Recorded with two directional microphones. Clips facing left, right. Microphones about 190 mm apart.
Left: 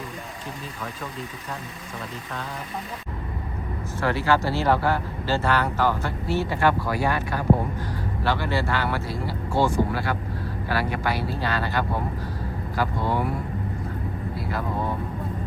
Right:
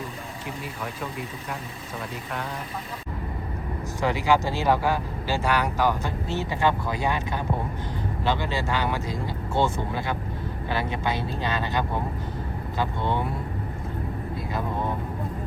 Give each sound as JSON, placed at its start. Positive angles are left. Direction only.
{"t": 4.0, "sound": "speech", "side_deg": -15}